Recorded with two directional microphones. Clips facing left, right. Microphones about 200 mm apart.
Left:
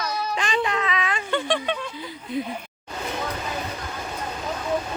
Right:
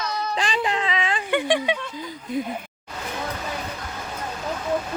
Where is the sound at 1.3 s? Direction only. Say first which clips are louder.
Right 3 dB; 15° right (ahead or behind).